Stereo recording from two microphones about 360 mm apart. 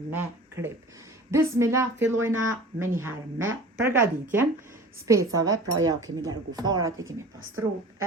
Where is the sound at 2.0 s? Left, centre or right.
Right.